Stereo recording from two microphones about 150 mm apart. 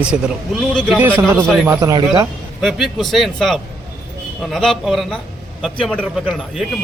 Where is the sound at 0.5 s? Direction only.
5° right (ahead or behind); by 2.3 s 30° right (ahead or behind).